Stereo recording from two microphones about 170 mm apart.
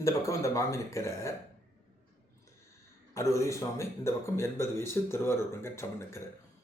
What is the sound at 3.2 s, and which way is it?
Speech, 15° left (ahead or behind).